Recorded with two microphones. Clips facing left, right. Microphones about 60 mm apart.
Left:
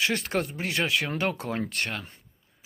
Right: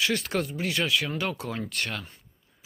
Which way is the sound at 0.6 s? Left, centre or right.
Left.